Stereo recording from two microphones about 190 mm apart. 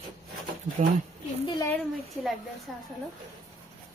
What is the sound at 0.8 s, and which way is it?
Speech, 40° right (ahead or behind).